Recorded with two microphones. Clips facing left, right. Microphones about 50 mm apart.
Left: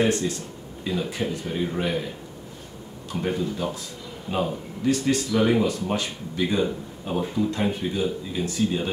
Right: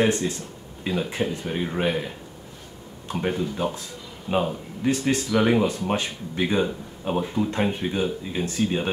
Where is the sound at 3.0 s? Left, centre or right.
Right.